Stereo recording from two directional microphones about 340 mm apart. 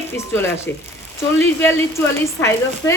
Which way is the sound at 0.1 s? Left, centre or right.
Centre.